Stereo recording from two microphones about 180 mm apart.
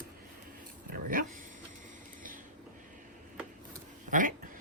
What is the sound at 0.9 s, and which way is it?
Dog, 50° right (ahead or behind).